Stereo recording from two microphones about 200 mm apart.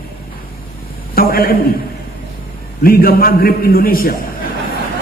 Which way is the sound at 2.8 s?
45° left (ahead or behind).